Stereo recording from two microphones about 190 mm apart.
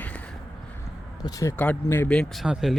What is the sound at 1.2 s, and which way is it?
Speech, 15° left (ahead or behind).